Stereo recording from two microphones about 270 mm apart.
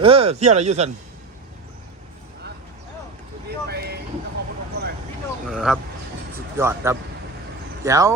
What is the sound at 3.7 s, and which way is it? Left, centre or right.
Vehicle, right.